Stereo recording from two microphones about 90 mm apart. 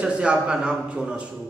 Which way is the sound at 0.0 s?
10° right (ahead or behind).